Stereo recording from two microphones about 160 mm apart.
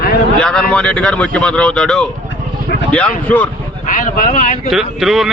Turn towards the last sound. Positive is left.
turn(degrees=0)  # may be behind; listen again after turning